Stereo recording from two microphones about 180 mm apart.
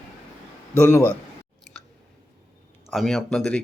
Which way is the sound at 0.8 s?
15° left (ahead or behind).